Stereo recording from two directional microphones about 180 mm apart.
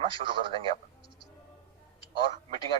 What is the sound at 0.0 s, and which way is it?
Speech, 30° right (ahead or behind).